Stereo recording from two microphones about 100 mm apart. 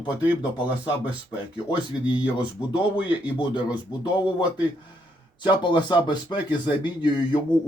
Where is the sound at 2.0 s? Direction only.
50° left (ahead or behind).